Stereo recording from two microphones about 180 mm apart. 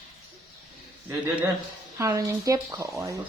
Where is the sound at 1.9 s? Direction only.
15° right (ahead or behind).